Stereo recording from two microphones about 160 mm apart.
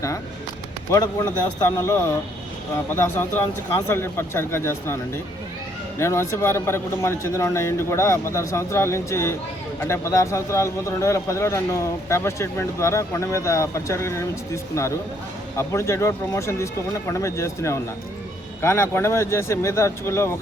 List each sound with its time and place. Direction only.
0.9 s speech: 15° left (ahead or behind)